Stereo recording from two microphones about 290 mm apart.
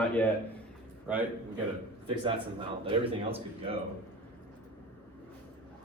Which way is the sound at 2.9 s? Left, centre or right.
Centre.